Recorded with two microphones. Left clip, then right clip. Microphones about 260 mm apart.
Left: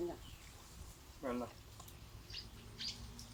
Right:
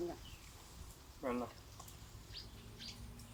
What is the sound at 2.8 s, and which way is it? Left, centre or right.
Bird, left.